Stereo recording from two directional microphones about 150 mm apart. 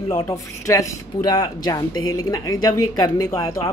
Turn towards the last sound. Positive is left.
turn(degrees=25)  # may be behind; listen again after turning